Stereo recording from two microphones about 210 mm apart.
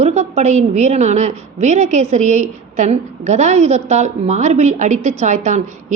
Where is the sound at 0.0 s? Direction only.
35° right (ahead or behind).